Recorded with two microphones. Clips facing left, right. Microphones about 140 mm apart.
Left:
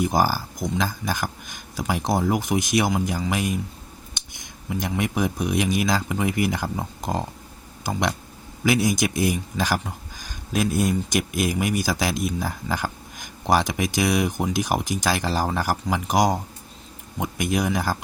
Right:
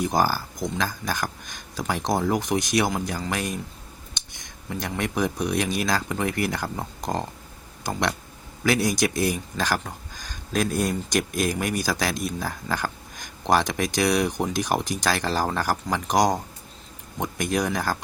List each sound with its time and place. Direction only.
0.0 s speech: 10° left (ahead or behind)